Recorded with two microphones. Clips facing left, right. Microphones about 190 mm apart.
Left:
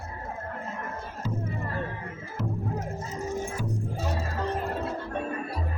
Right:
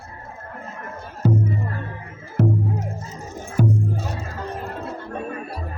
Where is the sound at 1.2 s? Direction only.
55° right (ahead or behind).